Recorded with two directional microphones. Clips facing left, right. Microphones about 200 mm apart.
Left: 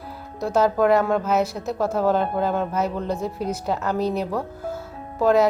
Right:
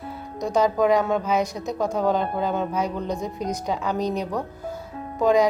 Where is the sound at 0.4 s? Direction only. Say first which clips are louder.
Left 1 dB; 5° left (ahead or behind).